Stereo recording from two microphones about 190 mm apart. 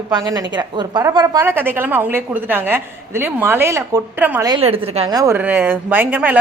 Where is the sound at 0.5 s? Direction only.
20° right (ahead or behind).